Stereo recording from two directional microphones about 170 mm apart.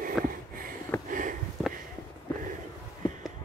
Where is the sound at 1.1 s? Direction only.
50° right (ahead or behind).